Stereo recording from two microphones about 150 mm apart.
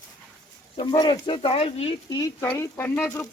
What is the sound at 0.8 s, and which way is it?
Speech, 30° left (ahead or behind).